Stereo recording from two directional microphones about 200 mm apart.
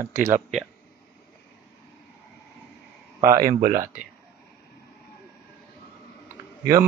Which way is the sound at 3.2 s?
15° right (ahead or behind).